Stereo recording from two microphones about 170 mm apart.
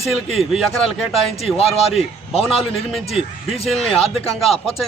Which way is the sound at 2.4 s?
Centre (ahead or behind).